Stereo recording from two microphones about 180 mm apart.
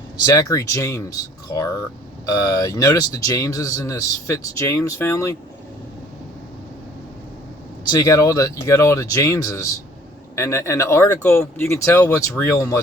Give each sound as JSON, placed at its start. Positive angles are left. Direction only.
{"t": 0.3, "sound": "speech", "side_deg": 15}
{"t": 7.9, "sound": "speech", "side_deg": 20}